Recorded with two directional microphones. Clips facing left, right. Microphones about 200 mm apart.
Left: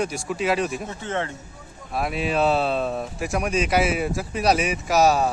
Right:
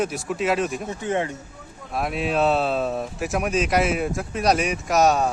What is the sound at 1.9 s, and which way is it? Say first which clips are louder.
Speech: even; centre (ahead or behind).